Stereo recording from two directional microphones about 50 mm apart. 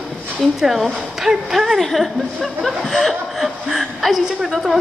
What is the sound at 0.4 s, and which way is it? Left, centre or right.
Speech, centre.